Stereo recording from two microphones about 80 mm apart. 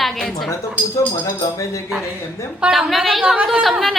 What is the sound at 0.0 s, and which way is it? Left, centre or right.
Chink, centre.